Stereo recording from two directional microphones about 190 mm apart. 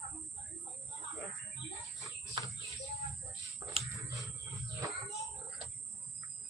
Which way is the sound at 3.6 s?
15° right (ahead or behind).